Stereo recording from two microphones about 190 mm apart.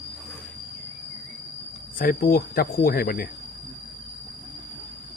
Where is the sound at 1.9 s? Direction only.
50° left (ahead or behind).